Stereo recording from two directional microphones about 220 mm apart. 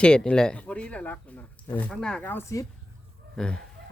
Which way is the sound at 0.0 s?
5° left (ahead or behind).